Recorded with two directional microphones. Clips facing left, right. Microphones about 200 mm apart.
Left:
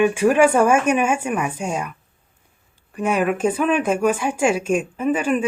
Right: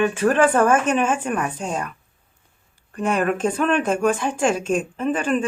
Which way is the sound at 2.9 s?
10° left (ahead or behind).